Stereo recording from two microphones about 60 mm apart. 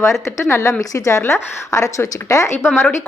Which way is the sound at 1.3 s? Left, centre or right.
Left.